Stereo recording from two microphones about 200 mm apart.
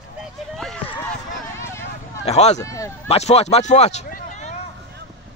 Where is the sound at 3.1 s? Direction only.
30° left (ahead or behind).